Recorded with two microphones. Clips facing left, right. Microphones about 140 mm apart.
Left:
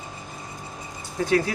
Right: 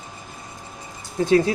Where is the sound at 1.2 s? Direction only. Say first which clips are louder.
Right 5 dB; 25° right (ahead or behind).